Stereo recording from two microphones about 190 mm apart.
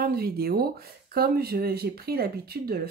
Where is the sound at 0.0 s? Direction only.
55° right (ahead or behind).